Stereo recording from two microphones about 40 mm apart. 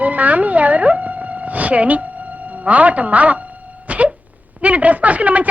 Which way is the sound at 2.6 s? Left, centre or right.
Right.